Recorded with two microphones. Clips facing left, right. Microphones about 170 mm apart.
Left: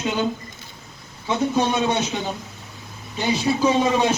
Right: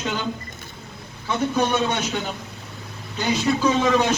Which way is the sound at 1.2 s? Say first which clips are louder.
Left 1 dB; 25° left (ahead or behind).